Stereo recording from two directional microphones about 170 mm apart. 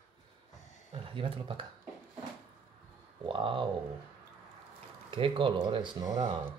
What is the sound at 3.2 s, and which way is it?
Speech, 30° right (ahead or behind).